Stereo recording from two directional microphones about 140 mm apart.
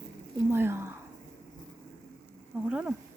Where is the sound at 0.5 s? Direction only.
15° right (ahead or behind).